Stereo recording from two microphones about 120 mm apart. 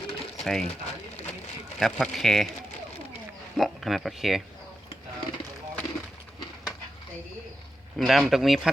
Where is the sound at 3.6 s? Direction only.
Centre (ahead or behind).